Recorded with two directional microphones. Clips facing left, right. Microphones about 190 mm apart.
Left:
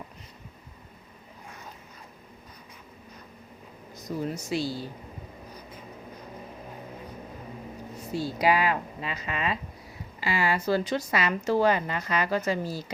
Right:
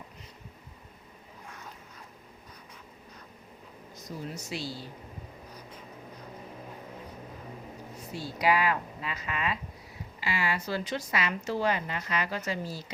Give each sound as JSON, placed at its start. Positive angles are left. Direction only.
{"t": 4.1, "sound": "speech", "side_deg": 55}
{"t": 4.5, "sound": "speech", "side_deg": 45}
{"t": 8.1, "sound": "speech", "side_deg": 30}
{"t": 10.2, "sound": "a woman's voice", "side_deg": 40}